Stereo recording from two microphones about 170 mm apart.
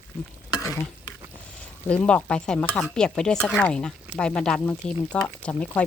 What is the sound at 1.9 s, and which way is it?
Speech, 10° left (ahead or behind).